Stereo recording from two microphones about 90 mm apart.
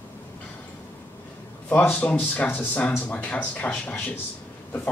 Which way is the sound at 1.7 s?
20° left (ahead or behind).